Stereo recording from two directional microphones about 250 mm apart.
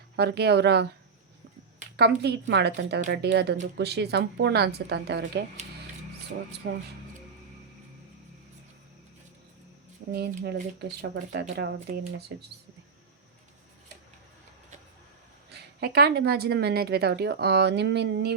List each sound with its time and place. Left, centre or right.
0.2 s a woman's voice: right
2.0 s a woman's voice: right
6.6 s a woman's voice: right
10.1 s a woman's voice: right
15.5 s a woman's voice: right